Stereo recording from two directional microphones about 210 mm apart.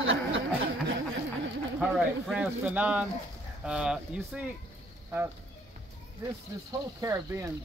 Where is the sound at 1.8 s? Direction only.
5° right (ahead or behind).